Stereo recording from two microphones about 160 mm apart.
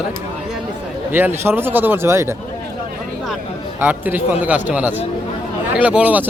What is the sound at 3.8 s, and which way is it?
Speech, 10° right (ahead or behind).